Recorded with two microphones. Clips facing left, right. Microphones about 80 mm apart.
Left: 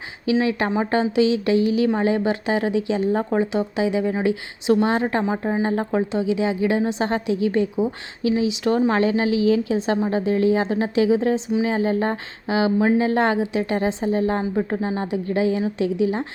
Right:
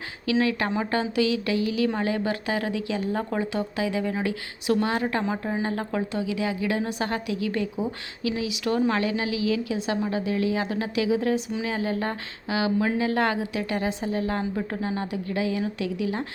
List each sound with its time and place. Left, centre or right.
0.3 s a woman's voice: left